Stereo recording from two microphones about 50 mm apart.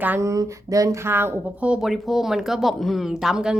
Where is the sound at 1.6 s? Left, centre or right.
Right.